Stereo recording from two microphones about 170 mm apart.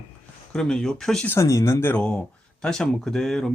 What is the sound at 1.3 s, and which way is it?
Speech, 15° left (ahead or behind).